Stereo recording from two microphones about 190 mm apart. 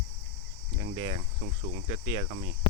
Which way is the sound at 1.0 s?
25° right (ahead or behind).